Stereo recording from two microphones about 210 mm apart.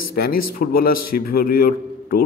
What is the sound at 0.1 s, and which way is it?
A man's voice, 45° left (ahead or behind).